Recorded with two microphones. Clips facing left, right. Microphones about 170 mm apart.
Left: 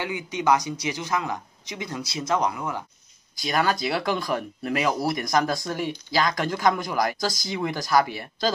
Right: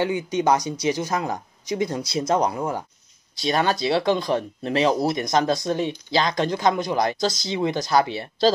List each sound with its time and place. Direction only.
0.0 s speech: 30° right (ahead or behind)
3.3 s speech: 25° right (ahead or behind)